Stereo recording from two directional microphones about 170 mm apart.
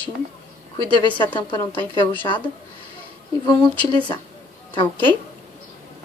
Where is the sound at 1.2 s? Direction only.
25° left (ahead or behind).